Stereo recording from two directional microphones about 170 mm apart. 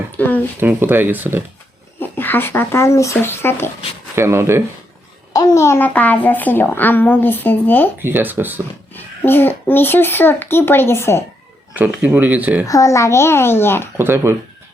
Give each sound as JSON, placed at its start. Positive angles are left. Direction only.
{"t": 0.2, "sound": "a child's voice", "side_deg": 10}
{"t": 0.6, "sound": "speech", "side_deg": -10}
{"t": 2.0, "sound": "speech", "side_deg": 10}
{"t": 4.1, "sound": "speech", "side_deg": -15}
{"t": 5.3, "sound": "a child's voice", "side_deg": 20}
{"t": 8.0, "sound": "speech", "side_deg": -10}
{"t": 9.0, "sound": "a child's voice", "side_deg": 10}
{"t": 11.8, "sound": "speech", "side_deg": -10}
{"t": 12.6, "sound": "a child's voice", "side_deg": 20}
{"t": 13.9, "sound": "speech", "side_deg": -15}